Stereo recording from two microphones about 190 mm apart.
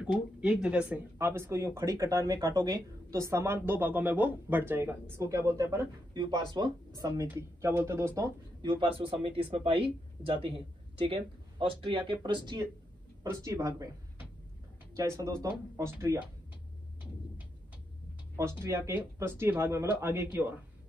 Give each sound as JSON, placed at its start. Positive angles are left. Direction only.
{"t": 0.0, "sound": "speech", "side_deg": -5}
{"t": 8.6, "sound": "speech", "side_deg": -25}
{"t": 15.0, "sound": "speech", "side_deg": -15}
{"t": 18.3, "sound": "speech", "side_deg": -15}